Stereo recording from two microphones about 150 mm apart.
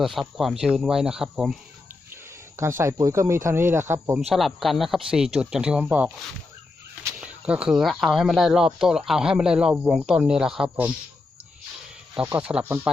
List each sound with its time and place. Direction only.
0.0 s speech: centre (ahead or behind)
2.6 s speech: 20° right (ahead or behind)
4.3 s speech: centre (ahead or behind)
7.2 s speech: 10° right (ahead or behind)
12.1 s speech: 10° right (ahead or behind)